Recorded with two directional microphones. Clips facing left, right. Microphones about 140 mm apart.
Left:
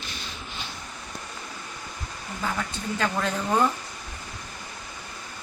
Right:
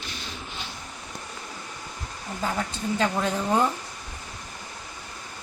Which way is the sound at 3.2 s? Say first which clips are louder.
Left 2 dB; 20° right (ahead or behind).